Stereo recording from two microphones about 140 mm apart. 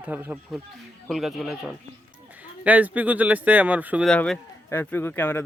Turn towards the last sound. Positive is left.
turn(degrees=15)  # may be behind; listen again after turning